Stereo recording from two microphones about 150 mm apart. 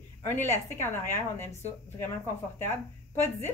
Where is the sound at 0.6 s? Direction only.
15° left (ahead or behind).